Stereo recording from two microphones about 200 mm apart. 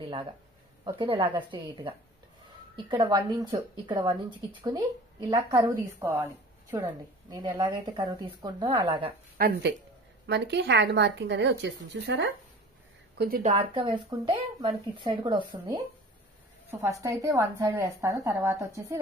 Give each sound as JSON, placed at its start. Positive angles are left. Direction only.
{"t": 0.0, "sound": "a sound", "side_deg": -25}
{"t": 0.8, "sound": "a woman's voice", "side_deg": -25}
{"t": 7.2, "sound": "speech", "side_deg": -20}
{"t": 9.4, "sound": "a woman's voice", "side_deg": -55}
{"t": 13.4, "sound": "a woman's voice", "side_deg": -30}